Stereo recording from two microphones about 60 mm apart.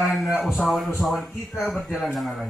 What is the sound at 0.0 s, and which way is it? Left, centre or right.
A man's voice, centre.